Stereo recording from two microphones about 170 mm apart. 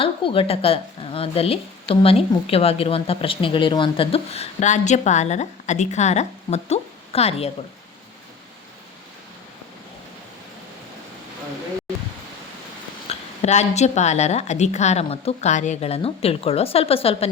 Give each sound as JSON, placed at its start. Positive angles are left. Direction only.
{"t": 0.0, "sound": "a woman's voice", "side_deg": 30}
{"t": 13.1, "sound": "a woman's voice", "side_deg": 40}